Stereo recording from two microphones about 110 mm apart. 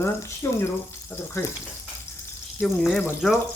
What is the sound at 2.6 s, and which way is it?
Speech, centre (ahead or behind).